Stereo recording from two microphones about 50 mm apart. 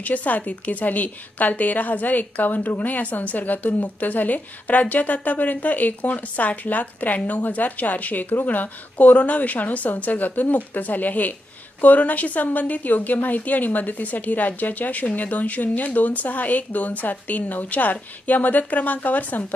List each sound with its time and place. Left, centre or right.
0.0 s a woman's voice: left